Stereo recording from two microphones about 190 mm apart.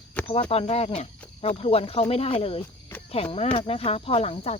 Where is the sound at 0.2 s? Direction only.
5° left (ahead or behind).